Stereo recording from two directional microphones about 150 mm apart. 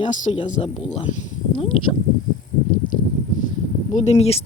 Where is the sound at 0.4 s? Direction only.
50° left (ahead or behind).